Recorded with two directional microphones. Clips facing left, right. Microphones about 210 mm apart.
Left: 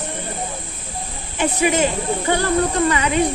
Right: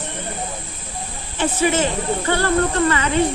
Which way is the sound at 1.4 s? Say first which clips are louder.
Left 1 dB; 15° left (ahead or behind).